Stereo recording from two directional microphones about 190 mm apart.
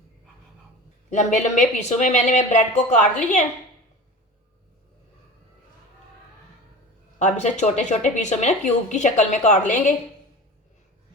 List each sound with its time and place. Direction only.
1.1 s speech: 40° left (ahead or behind)
7.2 s speech: 40° left (ahead or behind)